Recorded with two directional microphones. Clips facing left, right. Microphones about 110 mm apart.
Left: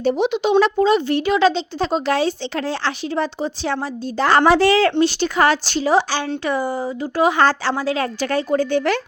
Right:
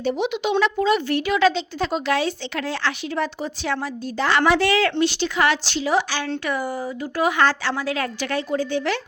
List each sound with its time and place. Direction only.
0.0 s a woman's voice: 40° left (ahead or behind)
8.5 s speech: 55° left (ahead or behind)